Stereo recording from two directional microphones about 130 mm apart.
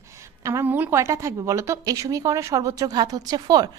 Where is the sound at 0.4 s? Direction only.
20° right (ahead or behind).